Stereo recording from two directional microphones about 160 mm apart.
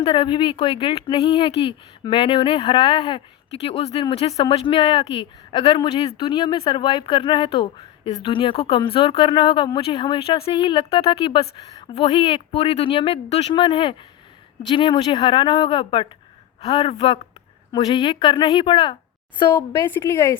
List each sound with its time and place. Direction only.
0.0 s a woman's voice: 35° left (ahead or behind)
19.7 s a woman's voice: 15° left (ahead or behind)